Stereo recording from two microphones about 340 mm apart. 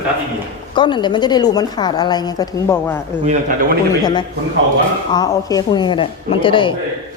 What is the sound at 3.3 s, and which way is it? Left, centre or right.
Speech, right.